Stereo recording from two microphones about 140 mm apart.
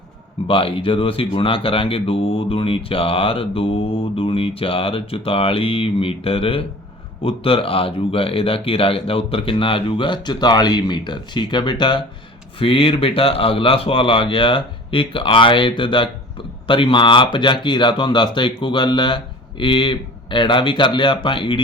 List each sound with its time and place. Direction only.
0.4 s speech: 40° left (ahead or behind)